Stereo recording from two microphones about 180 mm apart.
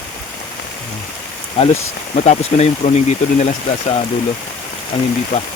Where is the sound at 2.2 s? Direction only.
40° left (ahead or behind).